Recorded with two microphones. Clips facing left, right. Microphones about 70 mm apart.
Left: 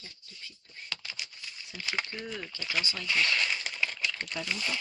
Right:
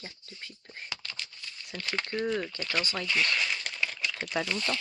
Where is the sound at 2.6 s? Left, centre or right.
Centre.